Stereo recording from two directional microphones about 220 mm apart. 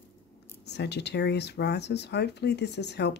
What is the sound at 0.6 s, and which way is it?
Speech, 50° left (ahead or behind).